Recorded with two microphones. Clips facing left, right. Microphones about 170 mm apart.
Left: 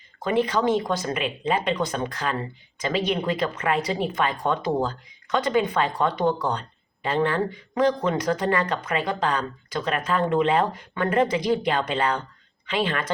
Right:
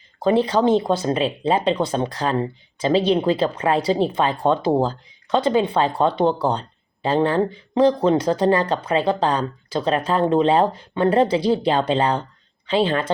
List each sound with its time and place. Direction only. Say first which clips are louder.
0.2 s speech: right 5 dB; 30° right (ahead or behind)